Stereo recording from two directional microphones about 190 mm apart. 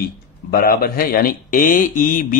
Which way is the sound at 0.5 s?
50° left (ahead or behind).